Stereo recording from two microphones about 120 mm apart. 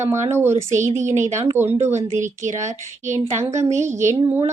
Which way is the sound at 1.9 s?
90° right.